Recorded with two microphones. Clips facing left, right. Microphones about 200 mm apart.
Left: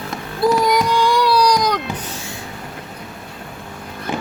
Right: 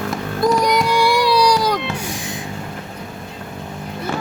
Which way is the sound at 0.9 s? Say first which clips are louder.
Even; 10° right (ahead or behind).